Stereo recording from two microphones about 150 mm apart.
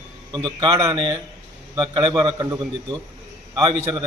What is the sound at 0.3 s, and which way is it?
A man's voice, 30° right (ahead or behind).